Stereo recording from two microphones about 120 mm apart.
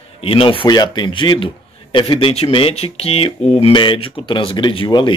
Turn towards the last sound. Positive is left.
turn(degrees=40)  # may be behind; listen again after turning